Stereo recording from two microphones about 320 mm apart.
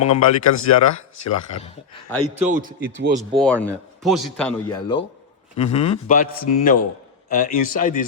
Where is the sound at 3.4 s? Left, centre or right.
Centre.